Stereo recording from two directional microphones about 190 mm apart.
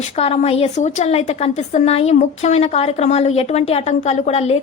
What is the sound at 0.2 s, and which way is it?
A woman's voice, 30° left (ahead or behind).